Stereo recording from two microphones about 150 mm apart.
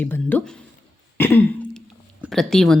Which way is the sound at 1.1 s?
15° left (ahead or behind).